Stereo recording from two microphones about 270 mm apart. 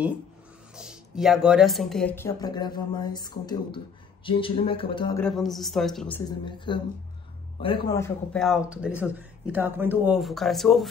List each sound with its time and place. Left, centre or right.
0.7 s speech: centre
5.2 s speech: centre
6.4 s speech: centre